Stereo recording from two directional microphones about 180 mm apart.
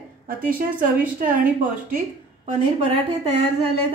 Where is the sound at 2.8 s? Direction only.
35° right (ahead or behind).